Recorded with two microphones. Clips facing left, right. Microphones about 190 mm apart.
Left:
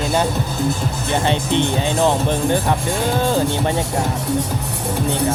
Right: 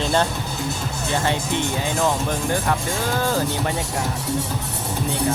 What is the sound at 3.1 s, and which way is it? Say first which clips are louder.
Speech: left 4 dB; 20° left (ahead or behind).